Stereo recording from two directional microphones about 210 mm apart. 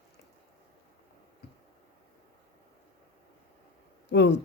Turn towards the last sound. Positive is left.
turn(degrees=55)  # may be behind; listen again after turning